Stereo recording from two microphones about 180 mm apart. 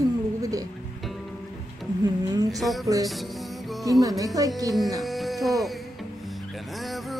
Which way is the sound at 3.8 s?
20° right (ahead or behind).